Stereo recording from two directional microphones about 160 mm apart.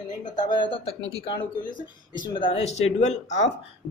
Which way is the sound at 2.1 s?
30° left (ahead or behind).